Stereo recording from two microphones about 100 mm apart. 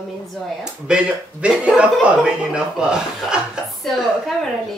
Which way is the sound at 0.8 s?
10° right (ahead or behind).